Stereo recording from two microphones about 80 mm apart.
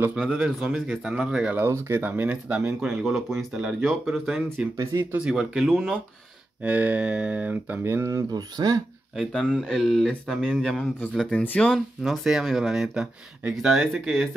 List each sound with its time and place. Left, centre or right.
0.3 s speech: centre
1.6 s speech: right
2.0 s speech: right; by 4.6 s centre
4.9 s speech: right
5.3 s speech: centre
6.6 s speech: centre; by 8.8 s right
9.2 s speech: centre
11.4 s speech: centre
11.7 s speech: centre